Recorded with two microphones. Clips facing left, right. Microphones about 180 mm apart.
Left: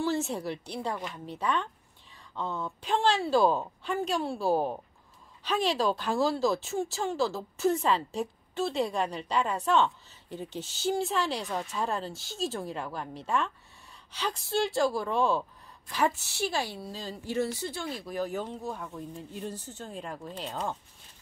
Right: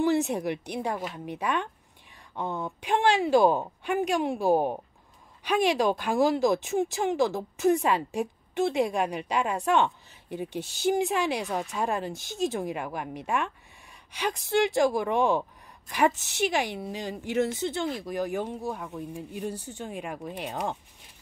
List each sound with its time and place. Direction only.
0.0 s speech: 15° right (ahead or behind)